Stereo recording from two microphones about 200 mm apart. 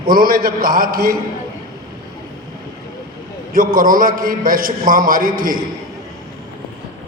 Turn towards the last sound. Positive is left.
turn(degrees=-45)  # may be behind; listen again after turning